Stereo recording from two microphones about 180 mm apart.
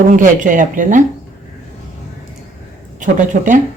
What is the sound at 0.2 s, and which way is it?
Speech, 45° right (ahead or behind).